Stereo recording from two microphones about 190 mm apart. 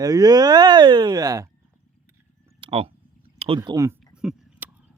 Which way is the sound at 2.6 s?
30° right (ahead or behind).